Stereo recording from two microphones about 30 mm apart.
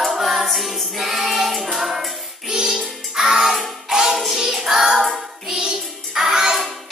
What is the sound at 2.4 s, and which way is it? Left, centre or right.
Music, centre.